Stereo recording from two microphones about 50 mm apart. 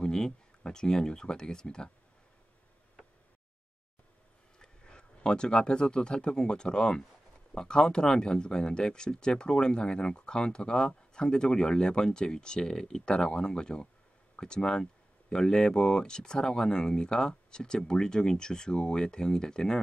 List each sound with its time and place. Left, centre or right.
0.0 s speech: centre
4.6 s speech: centre